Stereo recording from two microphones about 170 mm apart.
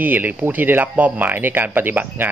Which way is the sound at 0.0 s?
10° right (ahead or behind).